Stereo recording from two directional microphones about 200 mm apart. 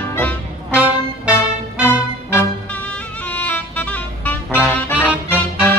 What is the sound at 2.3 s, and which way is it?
Music, 5° left (ahead or behind).